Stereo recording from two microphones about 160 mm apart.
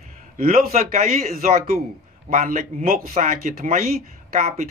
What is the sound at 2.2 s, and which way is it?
Speech, 50° right (ahead or behind).